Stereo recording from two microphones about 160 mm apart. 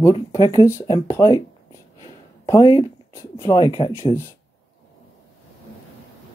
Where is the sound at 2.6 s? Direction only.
25° left (ahead or behind).